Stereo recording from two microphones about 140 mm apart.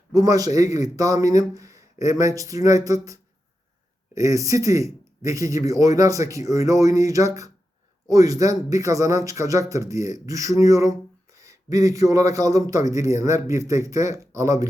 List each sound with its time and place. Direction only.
0.1 s speech: 25° right (ahead or behind)